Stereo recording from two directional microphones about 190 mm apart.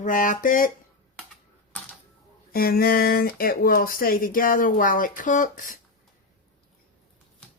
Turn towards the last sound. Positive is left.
turn(degrees=45)  # may be behind; listen again after turning